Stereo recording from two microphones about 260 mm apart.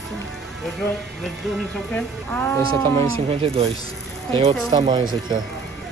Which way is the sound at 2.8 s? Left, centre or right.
Right.